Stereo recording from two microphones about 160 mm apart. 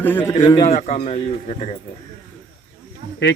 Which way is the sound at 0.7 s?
40° left (ahead or behind).